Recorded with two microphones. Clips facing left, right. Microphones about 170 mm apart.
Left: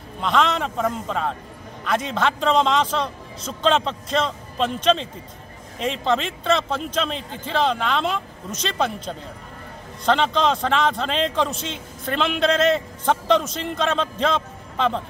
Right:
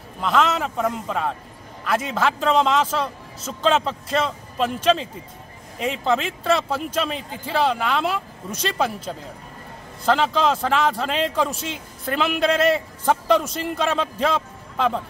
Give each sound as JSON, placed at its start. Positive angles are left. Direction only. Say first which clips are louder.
{"t": 0.2, "sound": "a man's voice", "louder": "even", "side_deg": -5}